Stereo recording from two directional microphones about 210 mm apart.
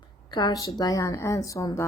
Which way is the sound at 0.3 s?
20° left (ahead or behind).